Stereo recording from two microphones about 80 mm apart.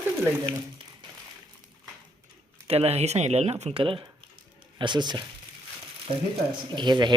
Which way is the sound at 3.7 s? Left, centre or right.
Right.